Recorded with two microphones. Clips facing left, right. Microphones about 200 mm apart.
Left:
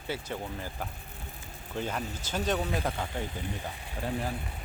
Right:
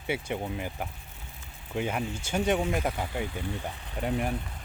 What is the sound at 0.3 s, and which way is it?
Speech, 15° right (ahead or behind).